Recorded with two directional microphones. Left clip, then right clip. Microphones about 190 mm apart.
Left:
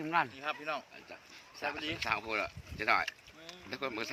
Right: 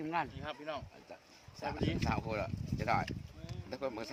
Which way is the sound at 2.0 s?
60° right (ahead or behind).